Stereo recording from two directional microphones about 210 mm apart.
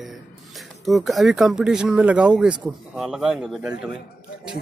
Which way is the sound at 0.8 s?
Centre (ahead or behind).